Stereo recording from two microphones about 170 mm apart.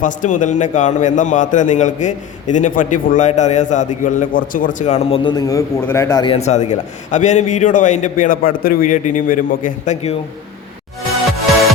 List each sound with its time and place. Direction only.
0.0 s a man's voice: 50° left (ahead or behind)